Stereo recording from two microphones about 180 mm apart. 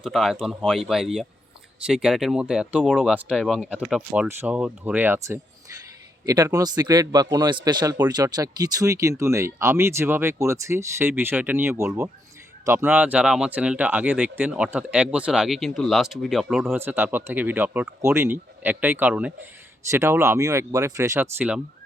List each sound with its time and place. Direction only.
0.0 s speech: centre (ahead or behind)
16.6 s speech: 10° right (ahead or behind)